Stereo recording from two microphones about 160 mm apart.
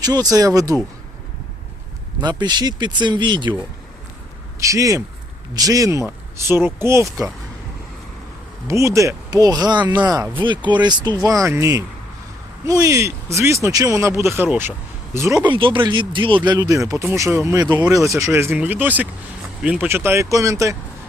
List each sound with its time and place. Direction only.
0.0 s speech: 25° right (ahead or behind)
2.2 s speech: 25° right (ahead or behind)
4.6 s speech: 20° right (ahead or behind)
8.6 s speech: 20° right (ahead or behind)
9.8 s speech: 10° right (ahead or behind)
10.1 s speech: 20° right (ahead or behind)
15.5 s speech: 30° right (ahead or behind)